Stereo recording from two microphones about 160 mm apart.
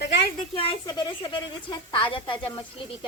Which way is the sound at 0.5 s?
35° left (ahead or behind).